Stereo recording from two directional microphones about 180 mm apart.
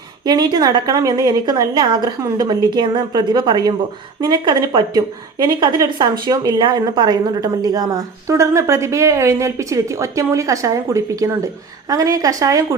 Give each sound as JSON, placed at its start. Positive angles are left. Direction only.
{"t": 0.3, "sound": "a woman's voice", "side_deg": -25}